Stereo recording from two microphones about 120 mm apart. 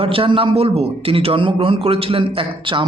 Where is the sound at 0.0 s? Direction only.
50° right (ahead or behind).